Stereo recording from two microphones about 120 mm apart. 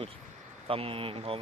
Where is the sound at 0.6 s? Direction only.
50° right (ahead or behind).